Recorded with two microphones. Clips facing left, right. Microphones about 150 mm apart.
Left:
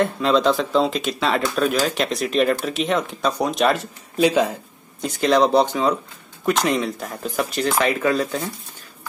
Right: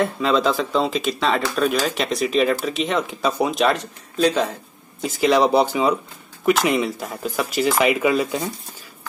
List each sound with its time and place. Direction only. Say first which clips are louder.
0.0 s speech: left 1 dB; centre (ahead or behind)
5.0 s speech: even; 5° right (ahead or behind)